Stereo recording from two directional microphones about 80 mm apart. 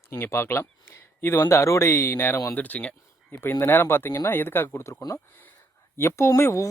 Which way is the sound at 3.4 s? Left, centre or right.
Left.